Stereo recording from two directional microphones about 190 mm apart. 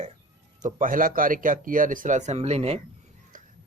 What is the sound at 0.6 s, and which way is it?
Speech, 45° right (ahead or behind).